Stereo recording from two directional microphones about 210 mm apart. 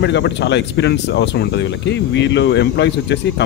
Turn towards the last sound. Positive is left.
turn(degrees=55)  # may be behind; listen again after turning